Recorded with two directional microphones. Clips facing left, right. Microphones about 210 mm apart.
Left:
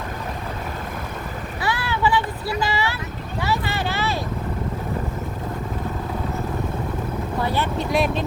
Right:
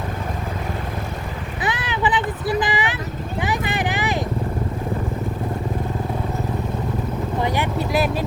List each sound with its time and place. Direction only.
1.6 s a sound: 20° right (ahead or behind)
3.4 s vehicle: 15° right (ahead or behind)
7.4 s vehicle: 15° right (ahead or behind)
7.9 s vehicle: 5° right (ahead or behind)